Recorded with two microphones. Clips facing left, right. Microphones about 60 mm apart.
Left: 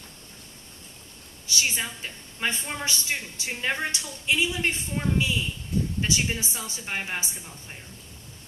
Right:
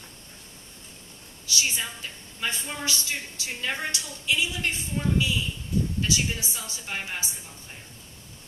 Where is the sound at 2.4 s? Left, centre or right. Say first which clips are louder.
Left 2 dB; left.